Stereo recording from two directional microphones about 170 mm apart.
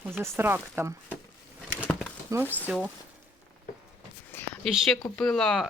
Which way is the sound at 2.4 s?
10° left (ahead or behind).